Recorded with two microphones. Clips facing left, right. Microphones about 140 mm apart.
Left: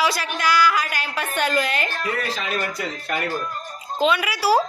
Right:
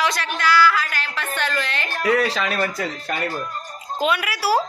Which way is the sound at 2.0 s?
90° right.